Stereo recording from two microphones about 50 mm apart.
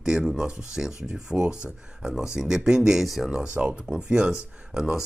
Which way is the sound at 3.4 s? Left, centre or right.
Right.